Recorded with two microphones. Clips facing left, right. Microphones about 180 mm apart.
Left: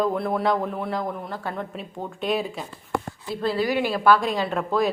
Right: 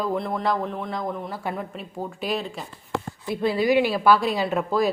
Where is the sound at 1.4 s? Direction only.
15° right (ahead or behind).